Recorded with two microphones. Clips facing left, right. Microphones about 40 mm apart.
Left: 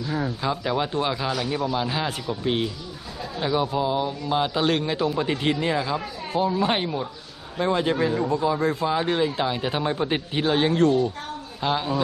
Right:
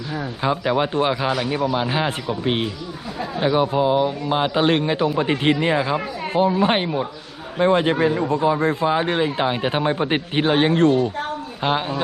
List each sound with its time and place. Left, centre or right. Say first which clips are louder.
0.4 s a man's voice: right 8 dB; right